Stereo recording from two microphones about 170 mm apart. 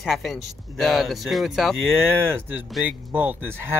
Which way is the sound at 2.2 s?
10° right (ahead or behind).